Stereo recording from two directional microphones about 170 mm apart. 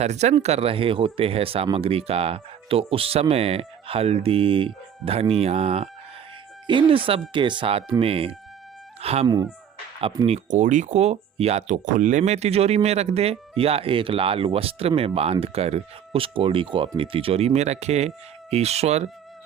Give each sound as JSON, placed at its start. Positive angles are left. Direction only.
{"t": 0.0, "sound": "speech", "side_deg": -40}
{"t": 9.0, "sound": "music", "side_deg": -35}
{"t": 9.2, "sound": "speech", "side_deg": -25}
{"t": 10.2, "sound": "speech", "side_deg": -40}